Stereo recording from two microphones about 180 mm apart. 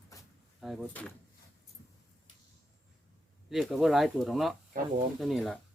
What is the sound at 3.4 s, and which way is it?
Speech, centre (ahead or behind).